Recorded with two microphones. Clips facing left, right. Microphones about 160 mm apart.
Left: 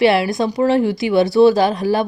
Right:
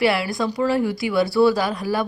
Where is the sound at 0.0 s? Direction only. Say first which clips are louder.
Left 6 dB; 20° left (ahead or behind).